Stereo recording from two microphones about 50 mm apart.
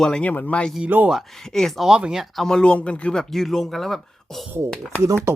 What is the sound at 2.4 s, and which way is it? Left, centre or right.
Speech, centre.